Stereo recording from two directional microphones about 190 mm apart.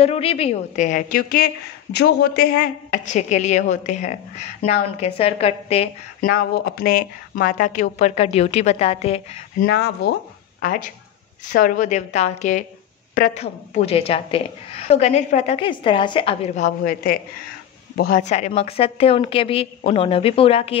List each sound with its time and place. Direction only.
0.0 s a woman's voice: 30° left (ahead or behind)
6.2 s a woman's voice: 50° left (ahead or behind); by 9.4 s 35° left (ahead or behind)
9.6 s a woman's voice: 55° left (ahead or behind); by 20.7 s 30° left (ahead or behind)